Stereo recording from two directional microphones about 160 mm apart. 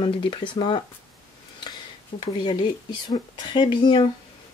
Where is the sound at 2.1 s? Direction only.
30° left (ahead or behind).